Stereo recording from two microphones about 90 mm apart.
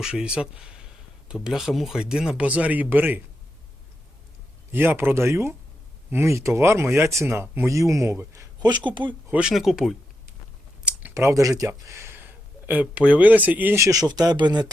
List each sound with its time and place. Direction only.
0.0 s speech: 10° right (ahead or behind)
4.7 s speech: 25° right (ahead or behind)
8.5 s speech: 55° right (ahead or behind)
9.3 s speech: 10° right (ahead or behind)
11.1 s speech: 30° right (ahead or behind)
12.6 s speech: 15° right (ahead or behind)
13.7 s speech: 40° right (ahead or behind)